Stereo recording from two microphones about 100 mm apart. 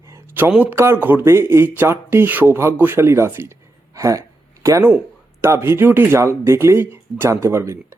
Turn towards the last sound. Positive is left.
turn(degrees=-25)  # may be behind; listen again after turning